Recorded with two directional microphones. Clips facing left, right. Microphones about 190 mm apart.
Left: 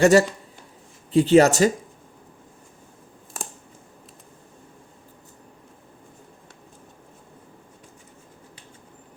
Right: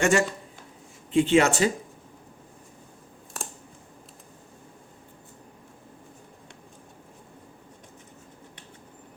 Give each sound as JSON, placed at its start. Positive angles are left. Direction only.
{"t": 0.0, "sound": "speech", "side_deg": 35}